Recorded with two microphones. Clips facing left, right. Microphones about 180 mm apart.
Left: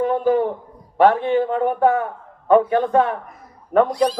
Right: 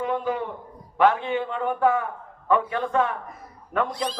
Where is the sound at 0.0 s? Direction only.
40° left (ahead or behind).